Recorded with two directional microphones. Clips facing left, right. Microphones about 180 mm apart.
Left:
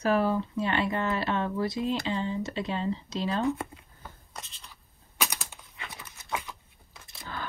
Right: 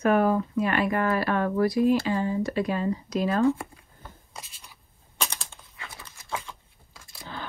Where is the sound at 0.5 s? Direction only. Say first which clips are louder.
Right 4 dB; 25° left (ahead or behind).